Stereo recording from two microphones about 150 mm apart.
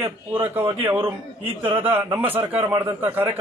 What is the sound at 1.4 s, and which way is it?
Speech, 35° right (ahead or behind).